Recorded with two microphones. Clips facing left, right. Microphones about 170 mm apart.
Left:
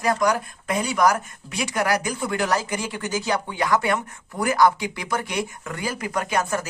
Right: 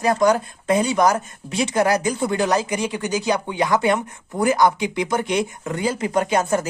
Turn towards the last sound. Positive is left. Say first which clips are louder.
# right 5 dB
turn(degrees=-20)  # may be behind; listen again after turning